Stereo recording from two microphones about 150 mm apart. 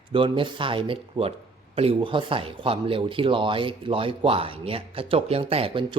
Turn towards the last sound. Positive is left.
turn(degrees=-35)  # may be behind; listen again after turning